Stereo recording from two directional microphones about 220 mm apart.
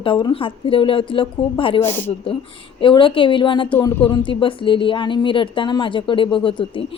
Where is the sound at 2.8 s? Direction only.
25° left (ahead or behind).